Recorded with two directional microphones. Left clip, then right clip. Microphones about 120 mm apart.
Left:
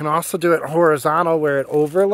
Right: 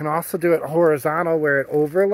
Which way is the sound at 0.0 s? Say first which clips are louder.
Left 3 dB; 35° left (ahead or behind).